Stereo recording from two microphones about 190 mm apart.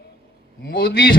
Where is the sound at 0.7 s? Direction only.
55° left (ahead or behind).